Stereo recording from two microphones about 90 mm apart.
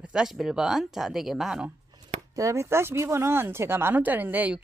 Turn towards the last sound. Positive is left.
turn(degrees=-15)  # may be behind; listen again after turning